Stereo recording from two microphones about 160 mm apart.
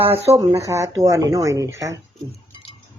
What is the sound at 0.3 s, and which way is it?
Speech, 20° right (ahead or behind).